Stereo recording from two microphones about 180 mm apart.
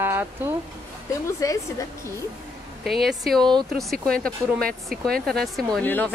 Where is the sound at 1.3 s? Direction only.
15° left (ahead or behind).